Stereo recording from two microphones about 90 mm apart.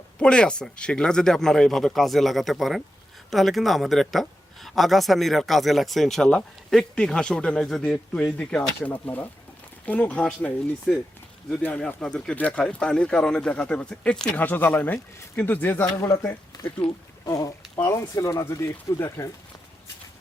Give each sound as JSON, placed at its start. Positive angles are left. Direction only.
{"t": 0.2, "sound": "speech", "side_deg": 10}
{"t": 11.9, "sound": "speech", "side_deg": 10}
{"t": 16.0, "sound": "speech", "side_deg": 30}
{"t": 17.2, "sound": "speech", "side_deg": 45}
{"t": 17.7, "sound": "speech", "side_deg": 30}